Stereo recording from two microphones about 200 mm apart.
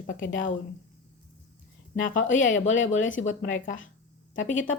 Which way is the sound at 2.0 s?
40° left (ahead or behind).